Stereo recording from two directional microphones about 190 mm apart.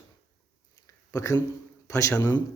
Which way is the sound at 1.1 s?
20° left (ahead or behind).